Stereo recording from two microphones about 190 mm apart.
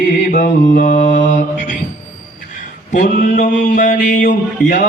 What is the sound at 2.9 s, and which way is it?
Mantra, 45° left (ahead or behind).